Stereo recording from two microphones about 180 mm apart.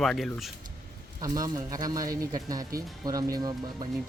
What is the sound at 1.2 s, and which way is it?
Speech, 20° right (ahead or behind).